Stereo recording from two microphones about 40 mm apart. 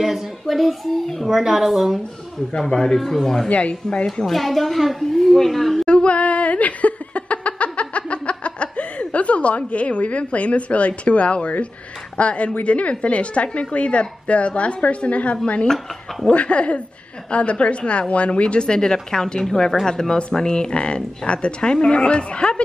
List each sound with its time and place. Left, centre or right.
0.0 s a woman's voice: centre
1.3 s a woman's voice: centre
2.6 s speech: centre
3.4 s a woman's voice: left
4.2 s a woman's voice: centre
5.9 s a sound: left
12.2 s a woman's voice: left
16.3 s a woman's voice: left